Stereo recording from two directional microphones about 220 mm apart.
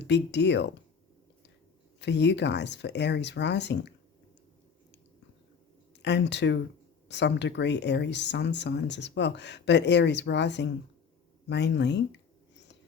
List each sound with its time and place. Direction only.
0.0 s speech: 50° left (ahead or behind)
2.0 s speech: 50° left (ahead or behind)
6.0 s speech: 50° left (ahead or behind)
11.4 s a sound: 50° left (ahead or behind)